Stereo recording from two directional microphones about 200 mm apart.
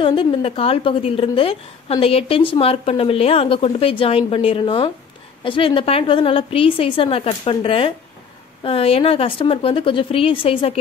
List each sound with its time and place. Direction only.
0.0 s a woman's voice: 25° left (ahead or behind)